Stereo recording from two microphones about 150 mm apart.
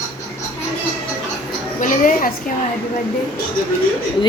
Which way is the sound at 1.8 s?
65° left (ahead or behind).